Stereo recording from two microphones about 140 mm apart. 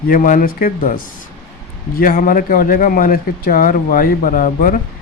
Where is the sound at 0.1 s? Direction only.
70° left (ahead or behind).